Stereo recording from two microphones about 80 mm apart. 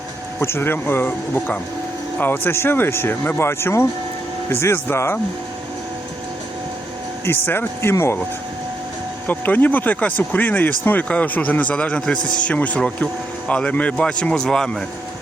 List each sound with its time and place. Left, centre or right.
0.3 s speech: left
7.3 s speech: left
9.2 s a man's voice: left